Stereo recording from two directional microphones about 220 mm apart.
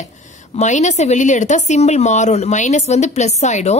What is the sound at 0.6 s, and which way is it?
Speech, 30° left (ahead or behind).